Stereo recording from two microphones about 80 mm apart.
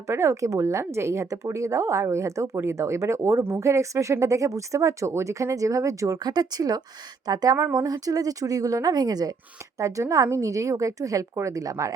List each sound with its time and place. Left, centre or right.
0.1 s a woman's voice: right
9.7 s a woman's voice: right